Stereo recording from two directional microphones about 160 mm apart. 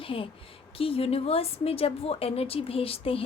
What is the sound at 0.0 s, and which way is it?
A woman's voice, 35° left (ahead or behind).